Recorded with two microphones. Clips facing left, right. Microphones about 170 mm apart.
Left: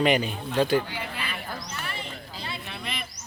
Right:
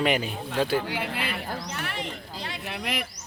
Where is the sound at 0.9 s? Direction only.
85° right.